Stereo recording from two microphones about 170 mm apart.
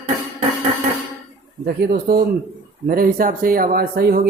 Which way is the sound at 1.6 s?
60° right (ahead or behind).